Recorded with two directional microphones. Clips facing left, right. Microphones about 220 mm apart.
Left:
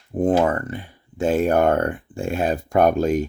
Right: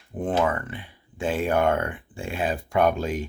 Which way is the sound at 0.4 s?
40° left (ahead or behind).